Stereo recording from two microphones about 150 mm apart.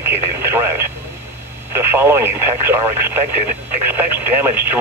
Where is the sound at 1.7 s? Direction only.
15° right (ahead or behind).